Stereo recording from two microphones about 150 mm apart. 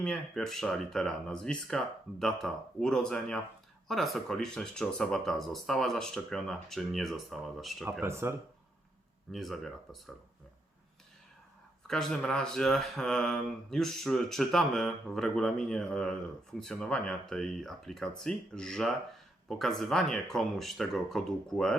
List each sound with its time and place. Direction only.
0.0 s speech: 5° left (ahead or behind)
8.0 s speech: 15° right (ahead or behind)
9.3 s speech: centre (ahead or behind)
11.9 s speech: 5° left (ahead or behind)